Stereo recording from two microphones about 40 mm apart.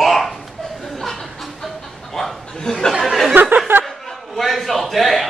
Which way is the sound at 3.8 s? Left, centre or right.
Centre.